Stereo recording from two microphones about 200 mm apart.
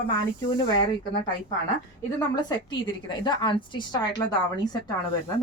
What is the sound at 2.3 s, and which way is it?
Speech, 20° left (ahead or behind).